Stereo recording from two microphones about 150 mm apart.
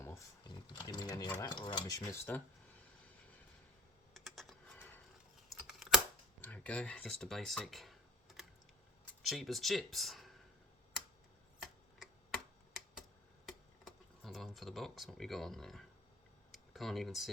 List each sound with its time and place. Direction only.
0.4 s a sound: 30° left (ahead or behind)
1.3 s stir: 25° left (ahead or behind)
2.3 s speech: 15° left (ahead or behind)
4.1 s typing: centre (ahead or behind)
5.5 s computer keyboard: centre (ahead or behind)
6.4 s speech: 10° left (ahead or behind)
9.2 s speech: centre (ahead or behind)
11.6 s a sound: 5° right (ahead or behind)
13.4 s speech: centre (ahead or behind)